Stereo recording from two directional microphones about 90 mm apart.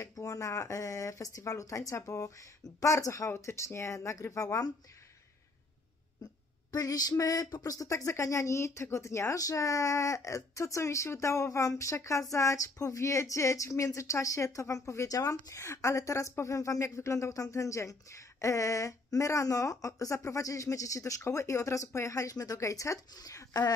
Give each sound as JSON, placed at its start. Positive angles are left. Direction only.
{"t": 0.0, "sound": "speech", "side_deg": 35}
{"t": 6.7, "sound": "speech", "side_deg": 45}